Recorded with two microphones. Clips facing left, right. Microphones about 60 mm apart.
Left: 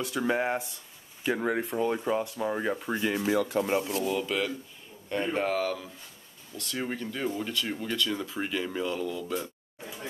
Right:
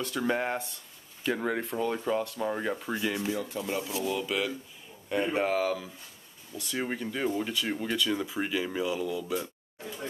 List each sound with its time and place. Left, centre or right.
0.0 s speech: centre
3.3 s speech: left
3.8 s speech: centre